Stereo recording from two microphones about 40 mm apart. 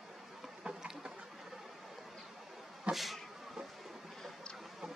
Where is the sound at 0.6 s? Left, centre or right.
Centre.